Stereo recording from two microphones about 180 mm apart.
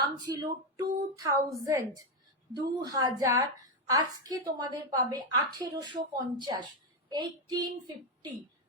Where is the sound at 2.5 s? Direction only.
20° right (ahead or behind).